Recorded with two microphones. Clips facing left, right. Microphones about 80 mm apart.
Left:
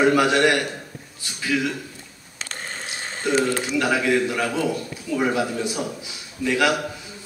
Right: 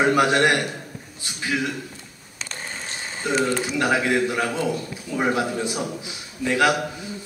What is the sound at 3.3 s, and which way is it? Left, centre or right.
A man's voice, right.